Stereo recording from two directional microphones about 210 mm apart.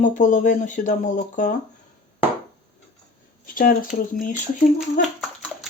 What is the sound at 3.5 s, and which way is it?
Speech, 40° left (ahead or behind).